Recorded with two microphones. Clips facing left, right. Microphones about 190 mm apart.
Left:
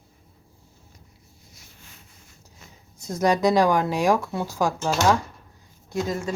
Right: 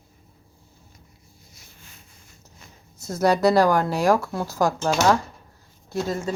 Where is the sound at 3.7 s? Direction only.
15° left (ahead or behind).